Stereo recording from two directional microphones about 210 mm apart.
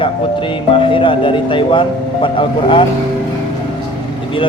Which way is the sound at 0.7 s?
25° left (ahead or behind).